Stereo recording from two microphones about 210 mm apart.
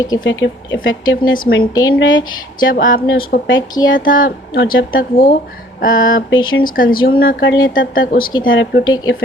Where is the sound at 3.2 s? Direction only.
45° left (ahead or behind).